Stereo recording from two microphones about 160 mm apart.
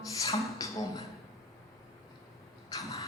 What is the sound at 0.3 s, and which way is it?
Speech, 20° left (ahead or behind).